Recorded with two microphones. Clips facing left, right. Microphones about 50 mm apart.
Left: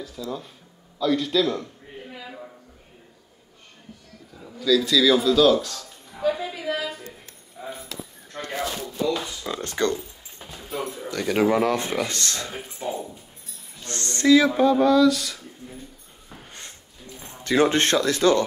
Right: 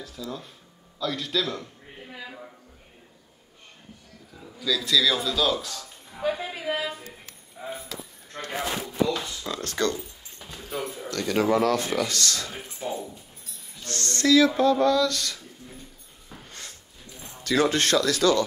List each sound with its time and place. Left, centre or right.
0.0 s speech: centre
4.6 s speech: centre
6.2 s music: right
6.6 s a sound: right
8.5 s a sound: right
9.5 s speech: left
10.4 s a sound: left
11.1 s speech: centre
11.5 s speech: left
12.5 s speech: centre; by 14.5 s left
14.5 s speech: centre
16.4 s a sound: left
17.2 s speech: left